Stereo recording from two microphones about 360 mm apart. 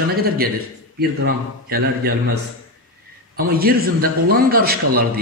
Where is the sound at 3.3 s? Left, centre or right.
Right.